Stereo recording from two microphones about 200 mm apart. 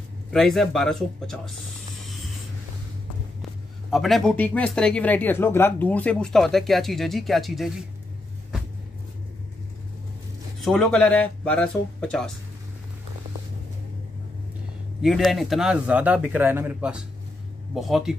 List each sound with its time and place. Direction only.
0.3 s speech: centre (ahead or behind)
3.9 s speech: centre (ahead or behind)
10.6 s speech: centre (ahead or behind)
15.0 s speech: centre (ahead or behind)